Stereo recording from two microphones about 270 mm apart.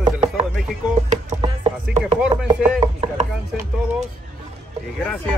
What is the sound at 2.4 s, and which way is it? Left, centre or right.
Chopping, centre.